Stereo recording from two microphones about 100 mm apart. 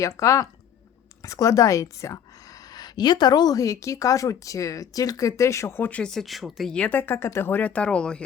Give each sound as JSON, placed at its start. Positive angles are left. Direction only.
{"t": 0.2, "sound": "a woman's voice", "side_deg": 30}
{"t": 2.7, "sound": "a woman's voice", "side_deg": 45}
{"t": 6.7, "sound": "speech", "side_deg": 15}